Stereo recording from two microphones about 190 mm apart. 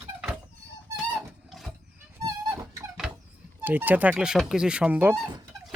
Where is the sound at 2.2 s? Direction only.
20° right (ahead or behind).